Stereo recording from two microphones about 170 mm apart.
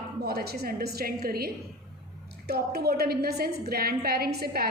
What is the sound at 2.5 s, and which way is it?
A woman's voice, 70° right (ahead or behind).